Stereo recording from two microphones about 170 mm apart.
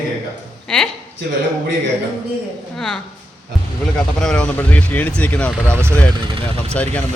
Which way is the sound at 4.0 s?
5° left (ahead or behind).